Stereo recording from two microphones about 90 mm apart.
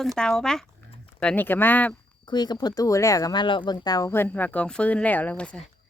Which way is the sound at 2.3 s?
50° left (ahead or behind).